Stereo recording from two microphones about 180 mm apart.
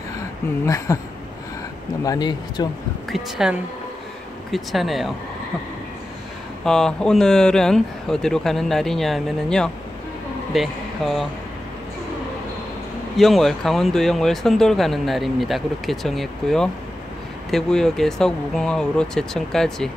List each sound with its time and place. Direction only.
0.7 s speech: 15° left (ahead or behind)
2.0 s speech: 25° left (ahead or behind)
3.1 s speech: centre (ahead or behind)
6.6 s speech: 5° left (ahead or behind)
13.2 s speech: centre (ahead or behind)